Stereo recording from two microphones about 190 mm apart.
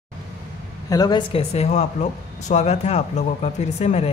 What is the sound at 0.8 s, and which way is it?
Speech, 20° left (ahead or behind).